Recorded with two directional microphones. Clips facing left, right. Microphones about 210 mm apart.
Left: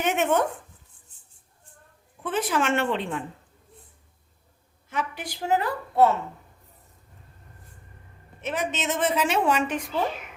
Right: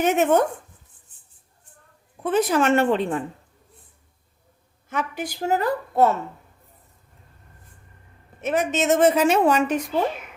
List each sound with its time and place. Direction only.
0.0 s a woman's voice: 40° right (ahead or behind)
2.2 s a woman's voice: 40° right (ahead or behind)
4.9 s a woman's voice: 45° right (ahead or behind)
8.4 s a woman's voice: 45° right (ahead or behind)